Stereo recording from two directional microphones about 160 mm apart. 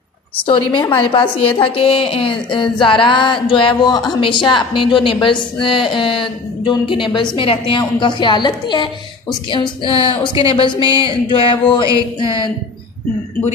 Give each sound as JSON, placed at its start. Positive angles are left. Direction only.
{"t": 0.5, "sound": "speech", "side_deg": 30}